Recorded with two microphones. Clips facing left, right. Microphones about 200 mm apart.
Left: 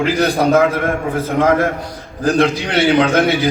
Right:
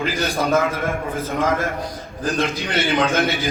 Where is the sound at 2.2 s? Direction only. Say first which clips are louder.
Left 8 dB; 70° left (ahead or behind).